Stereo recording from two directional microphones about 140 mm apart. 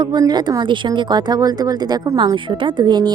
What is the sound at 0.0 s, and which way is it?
Speech, 30° right (ahead or behind).